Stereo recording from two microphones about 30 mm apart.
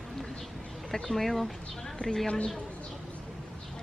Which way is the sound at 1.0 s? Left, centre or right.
Centre.